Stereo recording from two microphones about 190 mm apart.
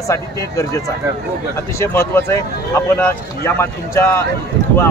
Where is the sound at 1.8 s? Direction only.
10° left (ahead or behind).